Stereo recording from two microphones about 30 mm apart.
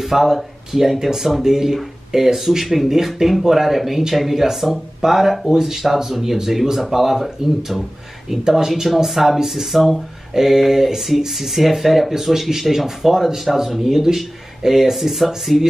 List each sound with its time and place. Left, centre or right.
0.0 s speech: centre
8.8 s speech: centre